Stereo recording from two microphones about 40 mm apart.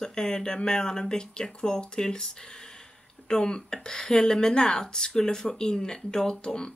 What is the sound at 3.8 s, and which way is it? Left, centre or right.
Speech, centre.